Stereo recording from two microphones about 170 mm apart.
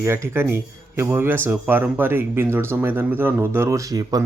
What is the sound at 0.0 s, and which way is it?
Speech, 15° right (ahead or behind).